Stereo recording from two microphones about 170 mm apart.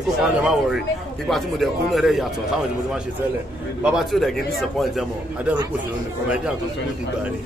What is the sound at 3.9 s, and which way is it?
Speech, centre (ahead or behind).